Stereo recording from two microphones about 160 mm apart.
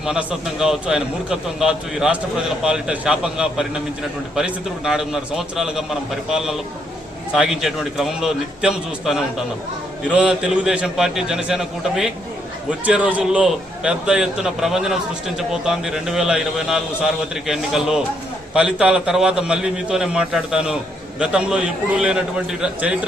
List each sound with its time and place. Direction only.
0.0 s a man's voice: 5° right (ahead or behind)